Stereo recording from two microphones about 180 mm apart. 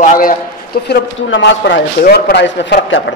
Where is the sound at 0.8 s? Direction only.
80° left.